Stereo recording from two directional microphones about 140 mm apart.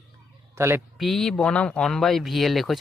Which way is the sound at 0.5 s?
20° right (ahead or behind).